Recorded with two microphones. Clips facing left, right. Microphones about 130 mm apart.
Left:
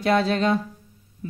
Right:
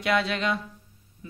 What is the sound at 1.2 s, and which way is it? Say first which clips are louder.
Heart sounds: left 9 dB; 40° left (ahead or behind).